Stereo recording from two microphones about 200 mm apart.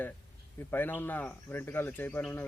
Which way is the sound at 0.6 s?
10° left (ahead or behind).